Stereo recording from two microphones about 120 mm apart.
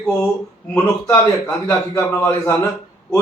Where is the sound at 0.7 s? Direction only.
20° left (ahead or behind).